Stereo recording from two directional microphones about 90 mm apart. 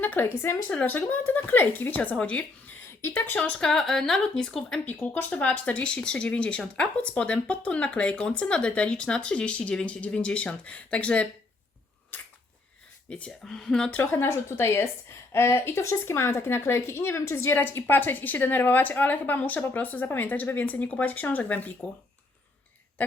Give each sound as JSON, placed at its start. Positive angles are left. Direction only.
{"t": 0.0, "sound": "a woman's voice", "side_deg": 20}
{"t": 3.6, "sound": "a woman's voice", "side_deg": 5}
{"t": 4.9, "sound": "speech", "side_deg": 20}
{"t": 12.1, "sound": "camera", "side_deg": 20}
{"t": 13.1, "sound": "speech", "side_deg": 10}
{"t": 13.9, "sound": "speech", "side_deg": 20}